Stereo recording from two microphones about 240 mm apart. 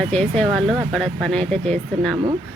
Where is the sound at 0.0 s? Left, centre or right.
Centre.